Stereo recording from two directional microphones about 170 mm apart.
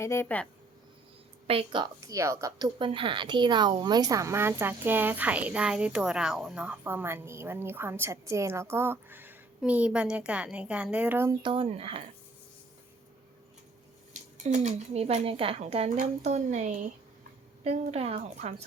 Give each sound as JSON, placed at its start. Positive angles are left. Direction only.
{"t": 0.0, "sound": "speech", "side_deg": 15}
{"t": 1.5, "sound": "a woman's voice", "side_deg": -30}
{"t": 2.7, "sound": "speech", "side_deg": -30}
{"t": 11.4, "sound": "speech", "side_deg": -30}
{"t": 14.1, "sound": "speech", "side_deg": -45}